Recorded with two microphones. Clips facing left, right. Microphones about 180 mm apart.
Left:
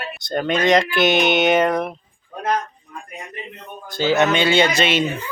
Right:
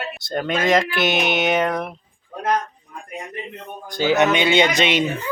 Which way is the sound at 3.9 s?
15° right (ahead or behind).